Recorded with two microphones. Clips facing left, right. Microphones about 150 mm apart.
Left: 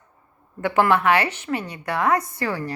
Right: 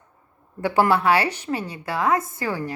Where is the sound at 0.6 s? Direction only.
35° right (ahead or behind).